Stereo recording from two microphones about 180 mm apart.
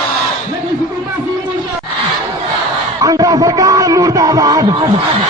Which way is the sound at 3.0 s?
20° right (ahead or behind).